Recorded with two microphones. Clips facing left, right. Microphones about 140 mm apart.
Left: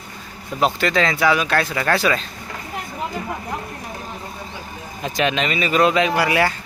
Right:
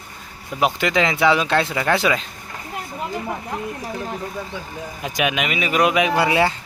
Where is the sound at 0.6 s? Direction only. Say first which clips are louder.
Even; 15° right (ahead or behind).